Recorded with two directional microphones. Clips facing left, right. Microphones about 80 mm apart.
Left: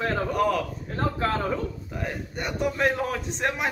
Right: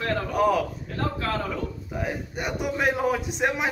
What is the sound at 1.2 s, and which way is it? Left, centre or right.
Speech, left.